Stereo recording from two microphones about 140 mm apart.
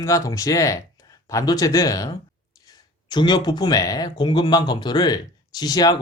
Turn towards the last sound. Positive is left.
turn(degrees=30)  # may be behind; listen again after turning